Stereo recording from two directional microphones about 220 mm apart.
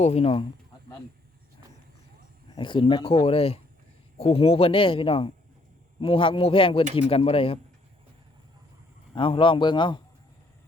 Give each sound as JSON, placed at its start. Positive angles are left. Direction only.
{"t": 0.0, "sound": "speech", "side_deg": 30}
{"t": 2.6, "sound": "speech", "side_deg": 20}
{"t": 9.1, "sound": "speech", "side_deg": 25}